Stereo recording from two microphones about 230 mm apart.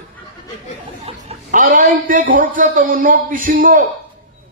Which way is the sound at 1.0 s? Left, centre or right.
Right.